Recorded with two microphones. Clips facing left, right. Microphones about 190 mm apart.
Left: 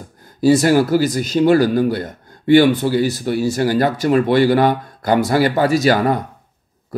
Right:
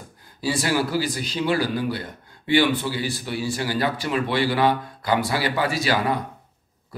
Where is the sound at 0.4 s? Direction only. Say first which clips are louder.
Left 11 dB; 45° left (ahead or behind).